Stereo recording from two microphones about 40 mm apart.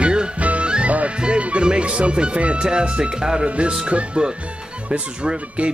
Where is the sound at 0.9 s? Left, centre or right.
Right.